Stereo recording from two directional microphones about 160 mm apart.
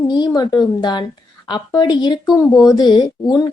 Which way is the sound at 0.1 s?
25° left (ahead or behind).